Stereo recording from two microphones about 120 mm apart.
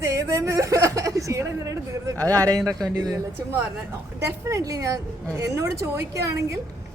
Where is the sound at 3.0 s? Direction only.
30° right (ahead or behind).